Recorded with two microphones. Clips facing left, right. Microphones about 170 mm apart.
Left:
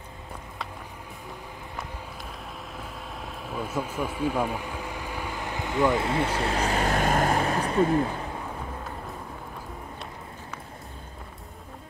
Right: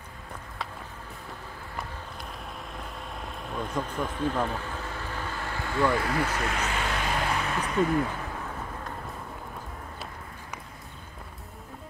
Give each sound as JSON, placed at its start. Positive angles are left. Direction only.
{"t": 2.7, "sound": "vehicle", "side_deg": 0}